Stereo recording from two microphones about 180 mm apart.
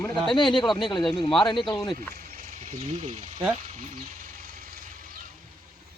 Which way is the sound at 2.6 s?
40° right (ahead or behind).